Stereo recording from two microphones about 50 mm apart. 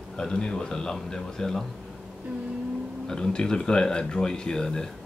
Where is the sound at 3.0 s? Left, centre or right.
Centre.